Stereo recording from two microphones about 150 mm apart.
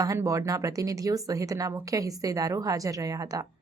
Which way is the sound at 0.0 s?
20° right (ahead or behind).